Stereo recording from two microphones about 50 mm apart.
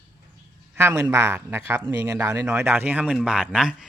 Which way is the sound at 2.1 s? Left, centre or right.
Right.